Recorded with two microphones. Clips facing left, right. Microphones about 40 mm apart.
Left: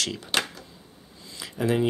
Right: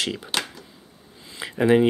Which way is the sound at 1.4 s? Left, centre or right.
Right.